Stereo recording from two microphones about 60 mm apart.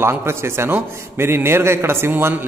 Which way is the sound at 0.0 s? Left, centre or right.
Right.